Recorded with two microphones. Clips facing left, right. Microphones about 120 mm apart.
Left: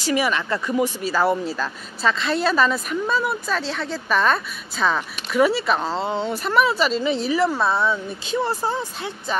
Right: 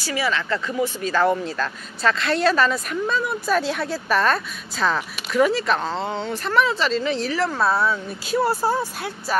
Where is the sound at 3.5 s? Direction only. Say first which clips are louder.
Right 3 dB; 10° right (ahead or behind).